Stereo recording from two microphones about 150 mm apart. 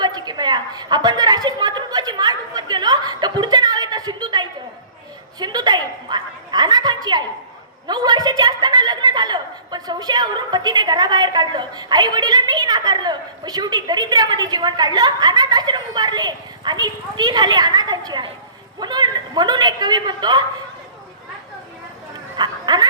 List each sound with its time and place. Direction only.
0.0 s a sound: 25° right (ahead or behind)
7.9 s a woman's voice: 25° right (ahead or behind)
22.4 s speech: 30° right (ahead or behind)